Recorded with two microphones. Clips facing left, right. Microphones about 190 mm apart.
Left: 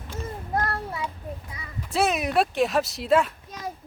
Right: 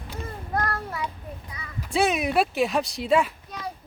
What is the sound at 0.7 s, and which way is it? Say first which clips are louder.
Child singing: even; 25° left (ahead or behind).